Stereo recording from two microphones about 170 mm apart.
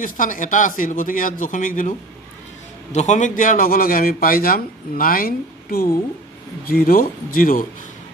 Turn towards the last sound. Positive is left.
turn(degrees=55)  # may be behind; listen again after turning